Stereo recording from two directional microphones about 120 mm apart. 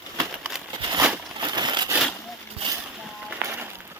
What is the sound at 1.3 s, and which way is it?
Crumpling, 40° right (ahead or behind).